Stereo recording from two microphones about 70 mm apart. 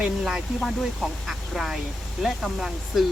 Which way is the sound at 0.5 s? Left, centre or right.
Centre.